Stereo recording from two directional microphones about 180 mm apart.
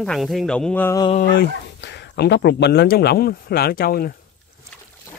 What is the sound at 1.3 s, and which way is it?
Speech, 75° left (ahead or behind).